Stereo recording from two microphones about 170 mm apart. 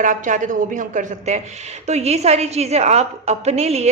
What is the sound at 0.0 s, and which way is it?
A woman's voice, 50° right (ahead or behind).